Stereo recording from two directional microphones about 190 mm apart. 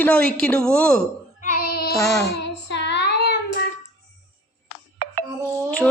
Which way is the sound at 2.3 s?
65° left (ahead or behind).